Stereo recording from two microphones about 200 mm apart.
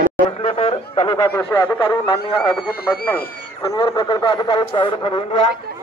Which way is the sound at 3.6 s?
20° left (ahead or behind).